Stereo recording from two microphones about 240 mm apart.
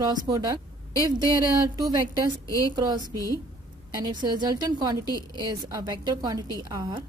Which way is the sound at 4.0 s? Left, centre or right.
Centre.